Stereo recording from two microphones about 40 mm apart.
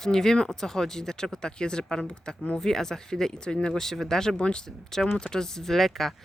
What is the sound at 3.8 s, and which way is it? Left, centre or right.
Speech, centre.